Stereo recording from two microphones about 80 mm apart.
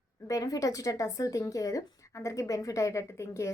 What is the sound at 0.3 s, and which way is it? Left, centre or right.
A woman's voice, left.